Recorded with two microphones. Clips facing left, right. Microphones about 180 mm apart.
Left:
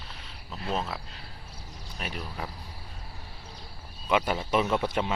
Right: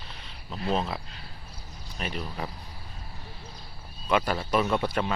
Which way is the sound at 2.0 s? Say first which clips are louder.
Right 3 dB; 5° left (ahead or behind).